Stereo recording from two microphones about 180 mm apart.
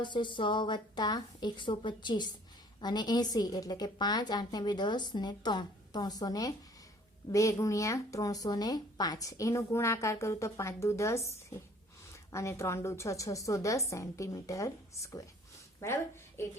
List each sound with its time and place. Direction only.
0.0 s a woman's voice: 25° left (ahead or behind)